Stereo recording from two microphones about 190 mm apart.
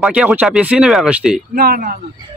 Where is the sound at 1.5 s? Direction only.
55° right (ahead or behind).